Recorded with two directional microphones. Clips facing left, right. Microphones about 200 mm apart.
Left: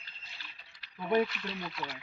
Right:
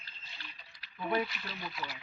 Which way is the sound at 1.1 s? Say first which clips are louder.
Left 7 dB; centre (ahead or behind).